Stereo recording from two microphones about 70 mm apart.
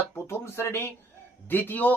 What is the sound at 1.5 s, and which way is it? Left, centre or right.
Speech, left.